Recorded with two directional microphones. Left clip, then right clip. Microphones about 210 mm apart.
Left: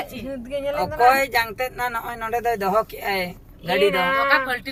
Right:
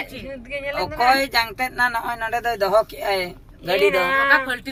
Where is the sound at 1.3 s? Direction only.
55° right (ahead or behind).